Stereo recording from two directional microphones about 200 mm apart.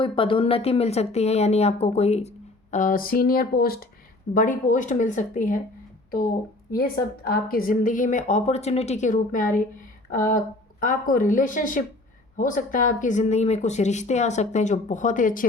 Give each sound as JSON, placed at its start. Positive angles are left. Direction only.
{"t": 0.0, "sound": "speech", "side_deg": 25}
{"t": 7.3, "sound": "speech", "side_deg": 45}